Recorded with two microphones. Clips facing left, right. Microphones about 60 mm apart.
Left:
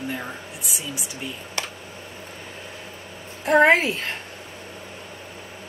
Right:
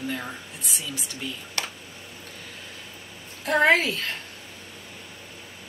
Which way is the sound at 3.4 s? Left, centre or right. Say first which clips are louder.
Left 4 dB; left.